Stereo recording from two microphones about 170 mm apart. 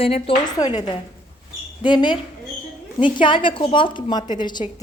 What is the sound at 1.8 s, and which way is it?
A woman's voice, 25° left (ahead or behind).